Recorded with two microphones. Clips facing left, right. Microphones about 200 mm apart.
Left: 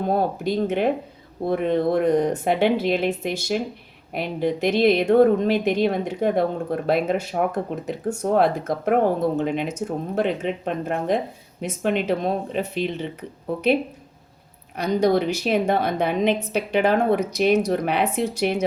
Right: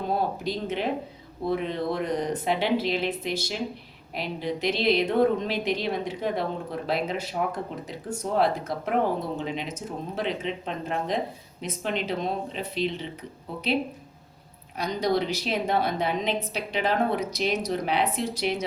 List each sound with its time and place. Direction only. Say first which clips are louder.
0.1 s speech: left 5 dB; 50° left (ahead or behind)
14.8 s a woman's voice: left 6 dB; 60° left (ahead or behind)